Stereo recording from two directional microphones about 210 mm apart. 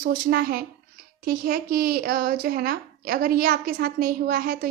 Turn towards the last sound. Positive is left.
turn(degrees=-45)  # may be behind; listen again after turning